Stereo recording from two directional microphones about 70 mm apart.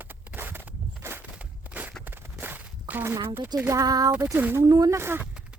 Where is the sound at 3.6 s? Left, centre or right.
Right.